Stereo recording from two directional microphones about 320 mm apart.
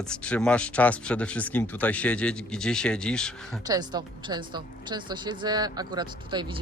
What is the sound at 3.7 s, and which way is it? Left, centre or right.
A woman's voice, centre.